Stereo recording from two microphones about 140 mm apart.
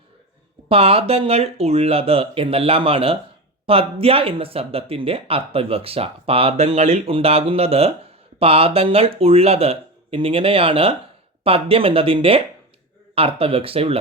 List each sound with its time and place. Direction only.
0.7 s speech: 45° right (ahead or behind)